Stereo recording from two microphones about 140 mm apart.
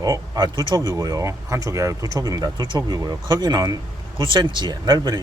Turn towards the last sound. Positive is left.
turn(degrees=-30)  # may be behind; listen again after turning